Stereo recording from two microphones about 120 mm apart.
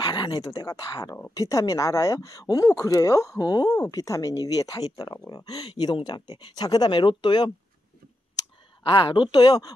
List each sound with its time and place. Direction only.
0.0 s speech: 40° left (ahead or behind)
8.8 s speech: 40° left (ahead or behind)